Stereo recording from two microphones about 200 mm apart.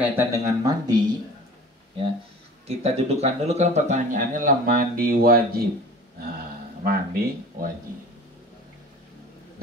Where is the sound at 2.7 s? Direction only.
30° right (ahead or behind); by 5.6 s 50° right (ahead or behind).